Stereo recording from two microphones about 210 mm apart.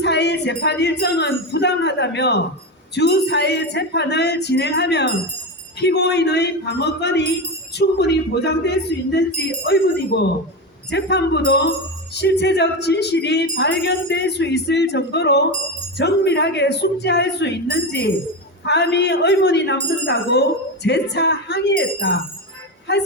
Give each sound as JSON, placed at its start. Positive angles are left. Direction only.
{"t": 0.0, "sound": "speech", "side_deg": 55}